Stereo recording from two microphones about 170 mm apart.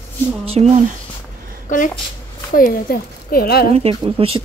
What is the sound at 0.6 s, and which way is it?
Speech, 40° right (ahead or behind).